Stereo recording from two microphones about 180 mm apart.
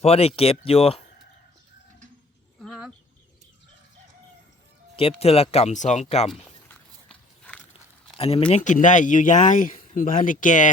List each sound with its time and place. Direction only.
0.0 s speech: 35° left (ahead or behind)
2.6 s chicken: 5° right (ahead or behind)
4.9 s speech: 30° left (ahead or behind)
6.3 s a sound: 5° left (ahead or behind)
8.2 s speech: 30° left (ahead or behind)
8.5 s speech: 45° left (ahead or behind)